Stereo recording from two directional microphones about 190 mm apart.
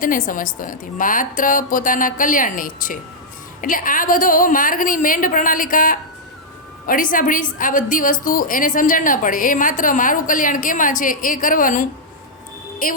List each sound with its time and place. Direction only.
0.0 s a woman's voice: 45° left (ahead or behind)